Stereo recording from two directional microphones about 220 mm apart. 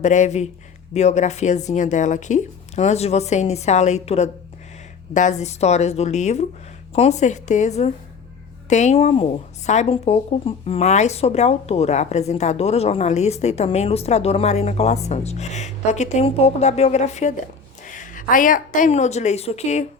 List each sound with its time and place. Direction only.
0.0 s a woman's voice: 35° left (ahead or behind)